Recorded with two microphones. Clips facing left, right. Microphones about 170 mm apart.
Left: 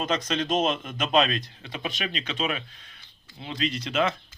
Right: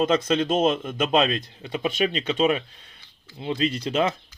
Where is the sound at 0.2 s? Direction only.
25° right (ahead or behind).